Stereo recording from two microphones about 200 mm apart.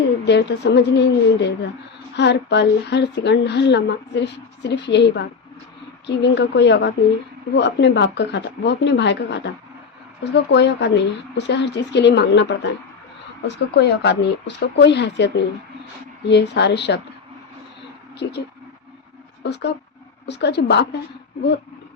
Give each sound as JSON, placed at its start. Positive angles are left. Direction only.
{"t": 0.3, "sound": "a woman's voice", "side_deg": 60}
{"t": 13.7, "sound": "a woman's voice", "side_deg": 60}
{"t": 18.2, "sound": "a woman's voice", "side_deg": 55}